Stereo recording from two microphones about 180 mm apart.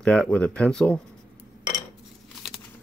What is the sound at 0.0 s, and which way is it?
Speech, 5° left (ahead or behind).